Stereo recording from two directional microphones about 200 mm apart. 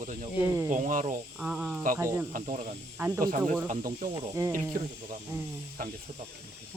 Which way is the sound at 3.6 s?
40° right (ahead or behind).